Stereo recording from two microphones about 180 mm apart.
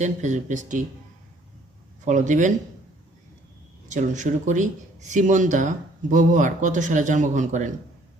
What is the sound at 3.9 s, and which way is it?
Speech, 45° right (ahead or behind).